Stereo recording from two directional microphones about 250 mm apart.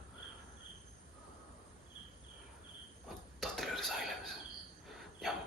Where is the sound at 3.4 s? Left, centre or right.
Centre.